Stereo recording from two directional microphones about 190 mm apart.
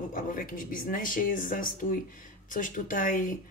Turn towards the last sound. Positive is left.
turn(degrees=45)  # may be behind; listen again after turning